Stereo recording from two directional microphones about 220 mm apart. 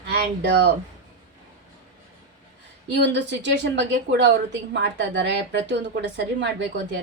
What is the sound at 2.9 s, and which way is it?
A woman's voice, 50° right (ahead or behind).